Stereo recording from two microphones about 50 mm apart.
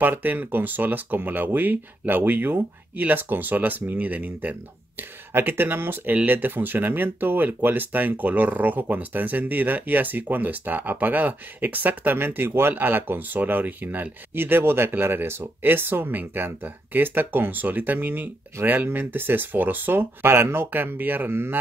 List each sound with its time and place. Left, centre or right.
0.0 s speech: right
20.7 s speech: right